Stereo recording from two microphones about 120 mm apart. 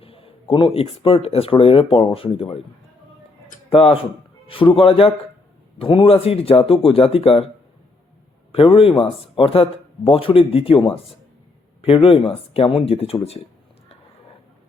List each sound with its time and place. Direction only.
0.0 s a sound: 50° left (ahead or behind)
0.5 s a man's voice: 50° left (ahead or behind)
3.7 s a man's voice: 50° left (ahead or behind)
8.5 s a man's voice: 50° left (ahead or behind)